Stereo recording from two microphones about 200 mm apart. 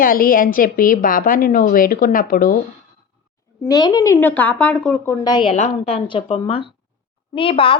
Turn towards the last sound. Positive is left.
turn(degrees=25)  # may be behind; listen again after turning